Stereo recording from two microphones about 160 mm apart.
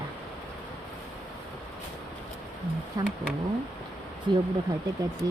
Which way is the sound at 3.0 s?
25° right (ahead or behind).